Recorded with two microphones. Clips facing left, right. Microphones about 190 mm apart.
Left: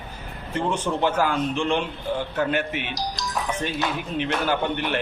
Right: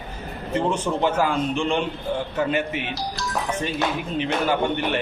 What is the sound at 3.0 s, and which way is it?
Speech, 15° left (ahead or behind).